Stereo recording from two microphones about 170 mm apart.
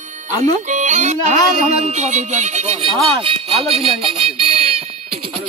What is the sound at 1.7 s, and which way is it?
Music, 40° right (ahead or behind).